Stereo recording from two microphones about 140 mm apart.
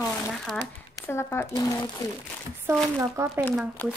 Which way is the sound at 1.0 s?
15° left (ahead or behind).